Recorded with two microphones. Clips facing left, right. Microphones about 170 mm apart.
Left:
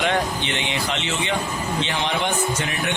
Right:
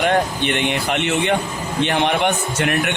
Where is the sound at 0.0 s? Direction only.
55° right (ahead or behind).